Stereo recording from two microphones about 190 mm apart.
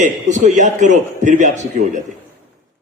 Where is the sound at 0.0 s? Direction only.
40° right (ahead or behind).